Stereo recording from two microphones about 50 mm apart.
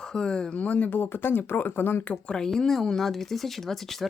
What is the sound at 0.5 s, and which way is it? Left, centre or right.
Speech, left.